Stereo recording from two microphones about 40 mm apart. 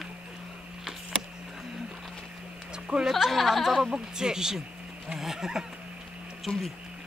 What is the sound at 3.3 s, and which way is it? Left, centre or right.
Cough, centre.